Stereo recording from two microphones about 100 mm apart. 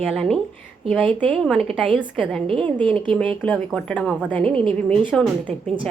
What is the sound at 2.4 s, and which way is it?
Speech, 60° right (ahead or behind).